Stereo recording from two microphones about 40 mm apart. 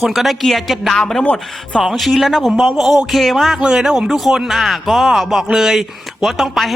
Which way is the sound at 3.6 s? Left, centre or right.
Right.